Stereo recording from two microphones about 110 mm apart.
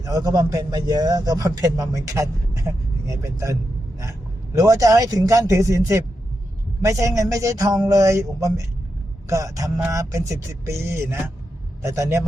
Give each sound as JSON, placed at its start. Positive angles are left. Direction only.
{"t": 0.0, "sound": "a man's voice", "side_deg": -30}